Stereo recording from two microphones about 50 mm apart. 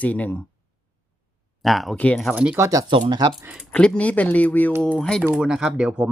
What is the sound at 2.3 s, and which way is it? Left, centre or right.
Speech, right.